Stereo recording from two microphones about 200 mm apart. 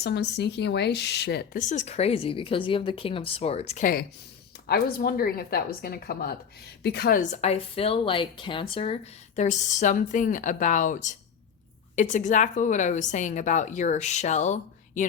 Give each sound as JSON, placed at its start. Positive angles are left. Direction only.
{"t": 0.0, "sound": "speech", "side_deg": 55}
{"t": 1.7, "sound": "speech", "side_deg": 35}
{"t": 4.6, "sound": "a woman's voice", "side_deg": 50}
{"t": 7.2, "sound": "speech", "side_deg": 35}